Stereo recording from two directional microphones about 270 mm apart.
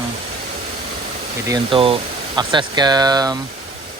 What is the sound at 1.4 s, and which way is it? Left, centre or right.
Speech, centre.